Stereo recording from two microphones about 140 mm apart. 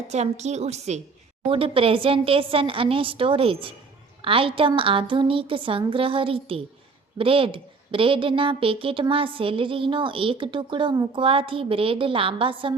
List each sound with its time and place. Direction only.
0.1 s a woman's voice: 55° right (ahead or behind)
1.5 s a woman's voice: 40° right (ahead or behind)